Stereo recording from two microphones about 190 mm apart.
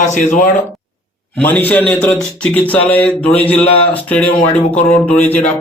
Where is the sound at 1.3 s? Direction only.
10° left (ahead or behind).